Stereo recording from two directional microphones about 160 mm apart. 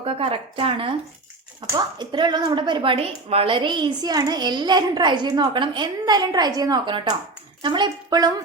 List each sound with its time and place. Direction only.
0.0 s a woman's voice: 35° right (ahead or behind)